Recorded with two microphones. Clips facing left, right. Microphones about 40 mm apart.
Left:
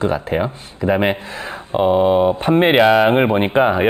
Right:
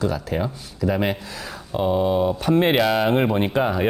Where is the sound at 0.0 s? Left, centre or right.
Left.